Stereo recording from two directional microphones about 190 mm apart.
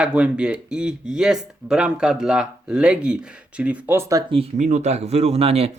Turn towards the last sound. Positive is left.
turn(degrees=-30)  # may be behind; listen again after turning